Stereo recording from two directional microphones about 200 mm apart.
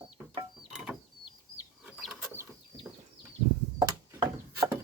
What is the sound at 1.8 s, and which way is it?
Chicken, 5° right (ahead or behind).